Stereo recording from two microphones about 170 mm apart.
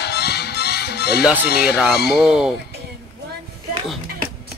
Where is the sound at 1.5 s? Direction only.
70° left (ahead or behind).